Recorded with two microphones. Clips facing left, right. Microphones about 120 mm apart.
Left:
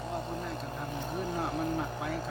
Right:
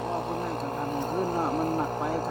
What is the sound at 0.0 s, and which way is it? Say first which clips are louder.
Vehicle: right 6 dB; 65° right (ahead or behind).